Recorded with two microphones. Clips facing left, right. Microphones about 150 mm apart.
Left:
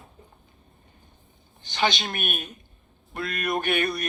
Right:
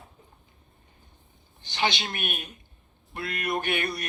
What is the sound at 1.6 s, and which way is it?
Speech, 45° left (ahead or behind).